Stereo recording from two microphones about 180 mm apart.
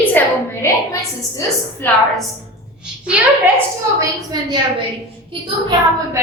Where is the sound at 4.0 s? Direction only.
20° right (ahead or behind).